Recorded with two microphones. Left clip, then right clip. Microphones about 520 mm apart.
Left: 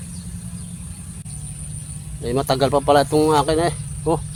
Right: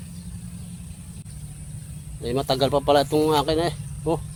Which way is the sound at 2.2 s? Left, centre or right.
Right.